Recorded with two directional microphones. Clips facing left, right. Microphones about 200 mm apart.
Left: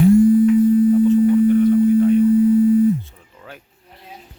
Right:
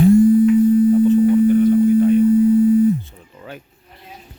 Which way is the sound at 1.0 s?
Centre (ahead or behind).